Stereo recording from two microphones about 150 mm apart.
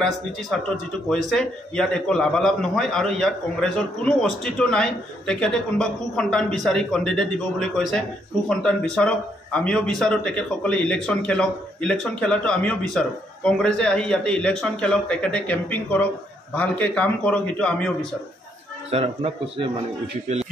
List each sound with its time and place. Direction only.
1.0 s a man's voice: 5° left (ahead or behind)
18.9 s speech: 40° right (ahead or behind)